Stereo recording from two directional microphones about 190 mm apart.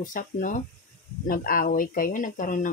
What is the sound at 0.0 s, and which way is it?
Speech, 45° left (ahead or behind).